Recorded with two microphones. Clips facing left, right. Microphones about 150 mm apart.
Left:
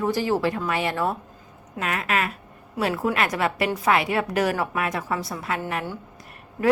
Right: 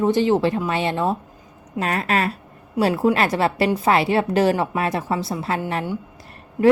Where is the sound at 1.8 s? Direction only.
35° right (ahead or behind).